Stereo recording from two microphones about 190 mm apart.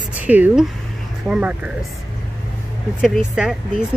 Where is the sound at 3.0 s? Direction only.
5° right (ahead or behind).